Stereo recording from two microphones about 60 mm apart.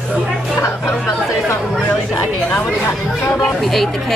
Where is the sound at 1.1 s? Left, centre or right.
Left.